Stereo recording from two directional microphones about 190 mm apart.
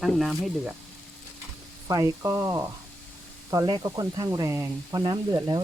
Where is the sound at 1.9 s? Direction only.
15° right (ahead or behind).